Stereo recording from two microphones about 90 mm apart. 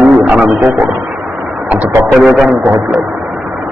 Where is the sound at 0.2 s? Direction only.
10° right (ahead or behind).